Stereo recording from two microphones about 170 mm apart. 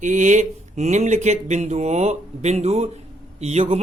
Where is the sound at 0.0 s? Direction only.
45° right (ahead or behind).